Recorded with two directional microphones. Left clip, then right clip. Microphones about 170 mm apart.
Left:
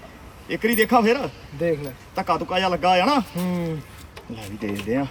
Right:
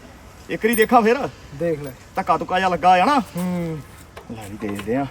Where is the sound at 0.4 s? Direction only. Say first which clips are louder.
Right 2 dB; 15° right (ahead or behind).